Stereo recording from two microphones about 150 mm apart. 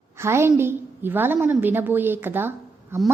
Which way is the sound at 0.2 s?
15° right (ahead or behind).